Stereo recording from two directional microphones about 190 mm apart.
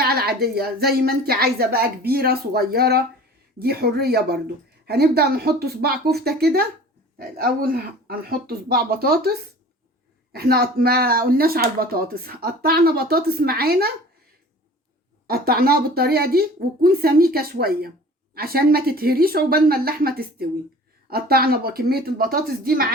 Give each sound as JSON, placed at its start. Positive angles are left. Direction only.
{"t": 0.0, "sound": "speech", "side_deg": -55}
{"t": 10.3, "sound": "speech", "side_deg": -55}
{"t": 15.3, "sound": "speech", "side_deg": -55}